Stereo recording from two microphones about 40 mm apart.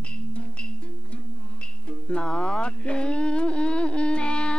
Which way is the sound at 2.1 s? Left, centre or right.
Left.